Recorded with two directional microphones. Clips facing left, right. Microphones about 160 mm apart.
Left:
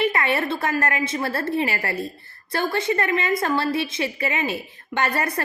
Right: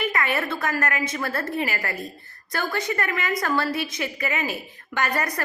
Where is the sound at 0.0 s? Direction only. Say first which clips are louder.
Left 3 dB; 30° left (ahead or behind).